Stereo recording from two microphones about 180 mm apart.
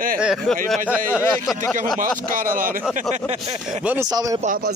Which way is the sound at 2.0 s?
50° right (ahead or behind).